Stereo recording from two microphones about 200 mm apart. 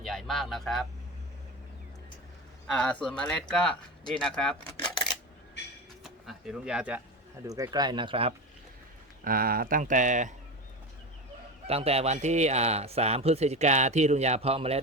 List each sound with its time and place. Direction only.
0.0 s speech: centre (ahead or behind)
2.6 s speech: 5° left (ahead or behind)
6.0 s speech: 5° right (ahead or behind)
7.4 s speech: 15° right (ahead or behind)
9.2 s speech: 45° right (ahead or behind)
11.7 s speech: 30° right (ahead or behind)